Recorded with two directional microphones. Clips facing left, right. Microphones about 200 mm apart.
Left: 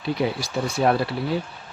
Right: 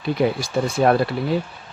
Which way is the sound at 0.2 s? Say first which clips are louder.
Right 7 dB; 50° right (ahead or behind).